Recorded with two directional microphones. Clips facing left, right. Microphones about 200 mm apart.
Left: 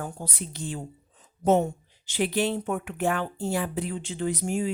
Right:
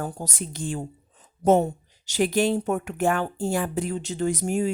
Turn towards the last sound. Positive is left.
turn(degrees=-45)  # may be behind; listen again after turning